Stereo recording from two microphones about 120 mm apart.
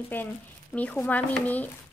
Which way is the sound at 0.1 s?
15° left (ahead or behind).